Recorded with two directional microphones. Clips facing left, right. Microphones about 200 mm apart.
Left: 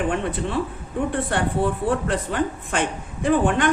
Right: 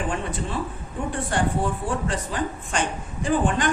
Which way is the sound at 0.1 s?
60° left (ahead or behind).